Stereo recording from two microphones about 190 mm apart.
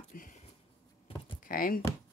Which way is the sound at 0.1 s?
45° left (ahead or behind).